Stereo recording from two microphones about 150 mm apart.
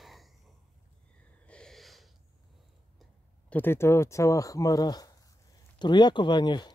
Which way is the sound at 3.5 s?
15° left (ahead or behind).